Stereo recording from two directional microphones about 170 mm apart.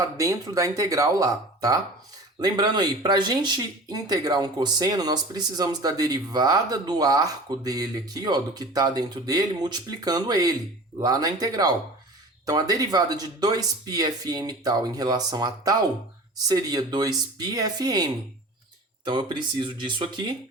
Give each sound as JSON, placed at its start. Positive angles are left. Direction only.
{"t": 0.0, "sound": "speech", "side_deg": -20}